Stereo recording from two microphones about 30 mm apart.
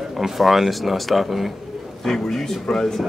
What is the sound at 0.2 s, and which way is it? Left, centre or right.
Speech, centre.